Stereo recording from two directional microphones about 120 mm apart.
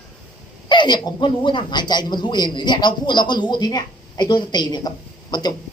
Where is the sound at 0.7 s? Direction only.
40° left (ahead or behind).